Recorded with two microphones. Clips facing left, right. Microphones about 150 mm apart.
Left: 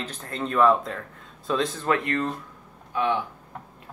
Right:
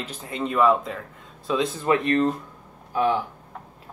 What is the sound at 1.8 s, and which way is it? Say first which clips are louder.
Speech: right 7 dB; 25° right (ahead or behind).